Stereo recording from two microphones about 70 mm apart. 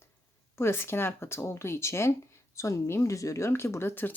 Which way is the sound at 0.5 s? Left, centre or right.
Left.